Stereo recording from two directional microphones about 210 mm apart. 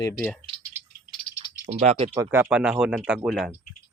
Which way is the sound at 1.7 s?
35° right (ahead or behind).